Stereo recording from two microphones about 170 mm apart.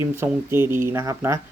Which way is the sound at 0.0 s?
15° right (ahead or behind).